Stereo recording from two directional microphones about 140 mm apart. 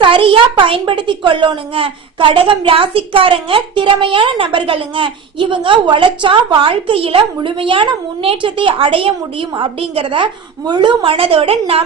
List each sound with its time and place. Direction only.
0.0 s a child's voice: 40° right (ahead or behind)